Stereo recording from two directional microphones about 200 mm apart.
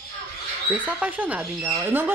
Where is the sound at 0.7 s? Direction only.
30° left (ahead or behind).